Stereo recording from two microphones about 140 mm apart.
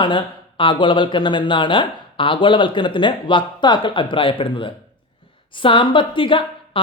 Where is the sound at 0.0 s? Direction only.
35° left (ahead or behind).